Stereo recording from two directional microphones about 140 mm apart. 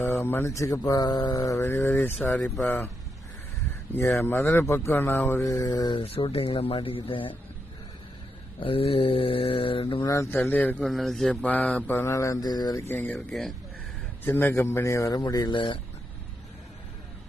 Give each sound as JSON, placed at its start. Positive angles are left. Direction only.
{"t": 0.0, "sound": "speech", "side_deg": 15}
{"t": 3.9, "sound": "speech", "side_deg": 15}
{"t": 6.0, "sound": "speech", "side_deg": 40}
{"t": 8.6, "sound": "speech", "side_deg": 40}
{"t": 10.0, "sound": "speech", "side_deg": 20}
{"t": 10.8, "sound": "speech", "side_deg": 0}
{"t": 12.9, "sound": "speech", "side_deg": 15}
{"t": 14.3, "sound": "speech", "side_deg": 15}